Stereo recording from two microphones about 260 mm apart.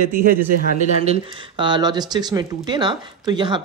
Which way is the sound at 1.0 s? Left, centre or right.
Centre.